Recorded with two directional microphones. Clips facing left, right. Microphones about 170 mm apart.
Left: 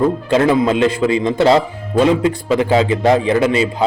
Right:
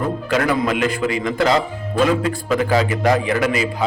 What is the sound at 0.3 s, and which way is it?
A man's voice, 25° left (ahead or behind).